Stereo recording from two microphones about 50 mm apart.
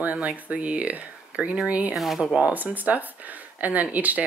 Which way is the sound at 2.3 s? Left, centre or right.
Right.